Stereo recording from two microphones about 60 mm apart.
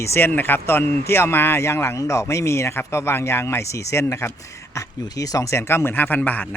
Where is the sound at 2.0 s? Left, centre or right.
Left.